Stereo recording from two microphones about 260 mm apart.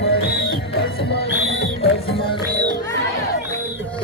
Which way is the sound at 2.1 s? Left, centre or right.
Centre.